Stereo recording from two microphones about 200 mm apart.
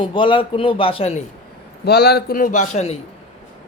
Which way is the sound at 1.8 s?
55° left (ahead or behind).